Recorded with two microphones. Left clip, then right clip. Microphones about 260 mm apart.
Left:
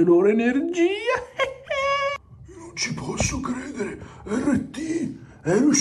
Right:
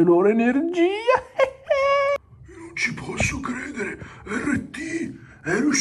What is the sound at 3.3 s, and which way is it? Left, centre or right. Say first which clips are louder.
A man's voice: right 1 dB; centre.